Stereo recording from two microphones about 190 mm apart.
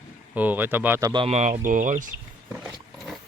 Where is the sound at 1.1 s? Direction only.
30° right (ahead or behind).